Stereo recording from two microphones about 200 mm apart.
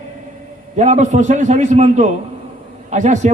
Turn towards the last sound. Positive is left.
turn(degrees=-35)  # may be behind; listen again after turning